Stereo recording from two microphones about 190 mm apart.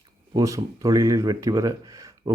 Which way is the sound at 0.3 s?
20° right (ahead or behind).